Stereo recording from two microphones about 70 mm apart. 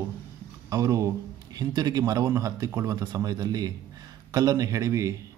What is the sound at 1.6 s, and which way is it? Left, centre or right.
Speech, right.